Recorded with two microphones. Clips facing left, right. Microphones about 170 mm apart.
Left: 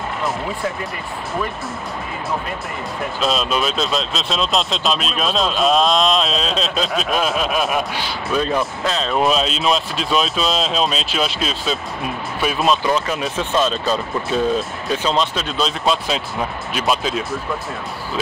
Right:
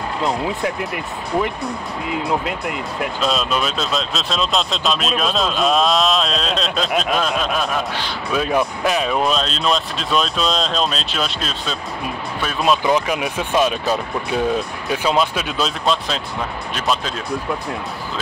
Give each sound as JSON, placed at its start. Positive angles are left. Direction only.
{"t": 3.2, "sound": "speech", "side_deg": 0}
{"t": 8.3, "sound": "speech", "side_deg": -10}
{"t": 9.1, "sound": "speech", "side_deg": 5}
{"t": 12.8, "sound": "speech", "side_deg": -15}